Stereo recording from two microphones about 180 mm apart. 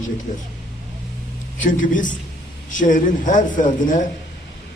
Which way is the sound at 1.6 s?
45° left (ahead or behind).